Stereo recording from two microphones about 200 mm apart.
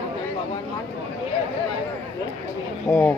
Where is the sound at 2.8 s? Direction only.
5° left (ahead or behind).